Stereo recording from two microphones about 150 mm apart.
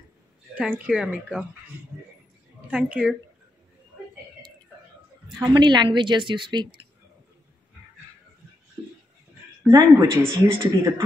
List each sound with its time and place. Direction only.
0.6 s speech: 5° right (ahead or behind)
2.7 s speech: 5° right (ahead or behind)
5.4 s a woman's voice: 30° right (ahead or behind)
9.7 s a woman's voice: 25° right (ahead or behind)